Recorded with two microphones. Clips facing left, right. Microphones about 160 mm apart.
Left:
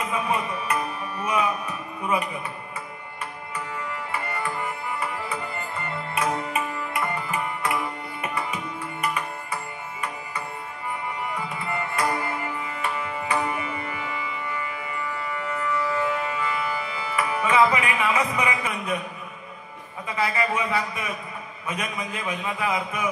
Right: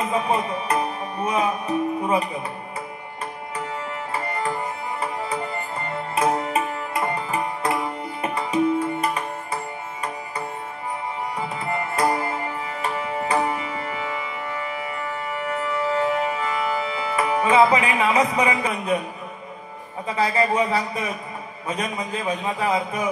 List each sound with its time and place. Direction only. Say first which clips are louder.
0.1 s music: right 4 dB; 35° right (ahead or behind)
4.1 s music: right 5 dB; 35° right (ahead or behind)
11.3 s tabla: right 3 dB; 35° right (ahead or behind)
16.0 s music: right 4 dB; 35° right (ahead or behind)
17.1 s speech: right 4 dB; 30° right (ahead or behind)
20.2 s a man's voice: right 5 dB; 35° right (ahead or behind)